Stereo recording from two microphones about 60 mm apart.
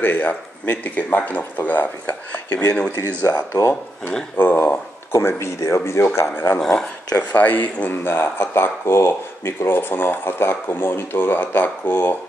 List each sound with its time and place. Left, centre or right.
0.0 s speech: left
3.3 s speech: left
4.4 s speech: left
6.6 s speech: centre
7.2 s speech: left